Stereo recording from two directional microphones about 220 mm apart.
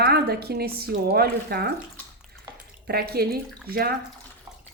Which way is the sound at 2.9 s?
45° right (ahead or behind).